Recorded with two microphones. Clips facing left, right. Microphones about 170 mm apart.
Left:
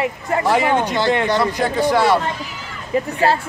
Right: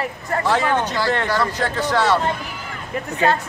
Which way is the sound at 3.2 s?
30° left (ahead or behind).